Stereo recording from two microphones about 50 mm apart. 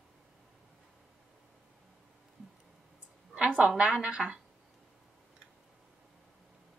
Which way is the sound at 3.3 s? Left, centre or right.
Right.